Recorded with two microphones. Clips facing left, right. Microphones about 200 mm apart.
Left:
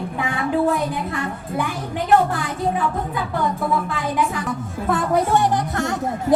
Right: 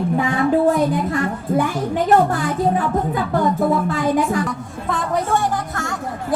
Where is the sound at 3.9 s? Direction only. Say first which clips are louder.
Right 5 dB; 45° right (ahead or behind).